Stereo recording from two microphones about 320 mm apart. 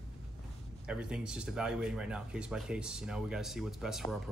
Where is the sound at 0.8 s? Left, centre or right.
Centre.